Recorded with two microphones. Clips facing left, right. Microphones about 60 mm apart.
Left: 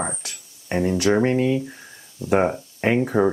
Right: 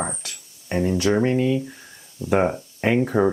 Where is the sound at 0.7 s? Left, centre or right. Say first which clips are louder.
Left 1 dB; centre.